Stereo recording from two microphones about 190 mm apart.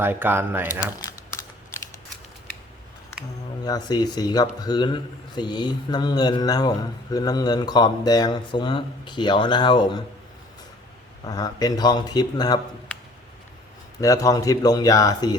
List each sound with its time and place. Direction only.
0.0 s speech: 10° right (ahead or behind)
3.6 s a man's voice: 20° left (ahead or behind)
11.3 s a man's voice: 20° left (ahead or behind)
14.0 s a man's voice: 15° left (ahead or behind)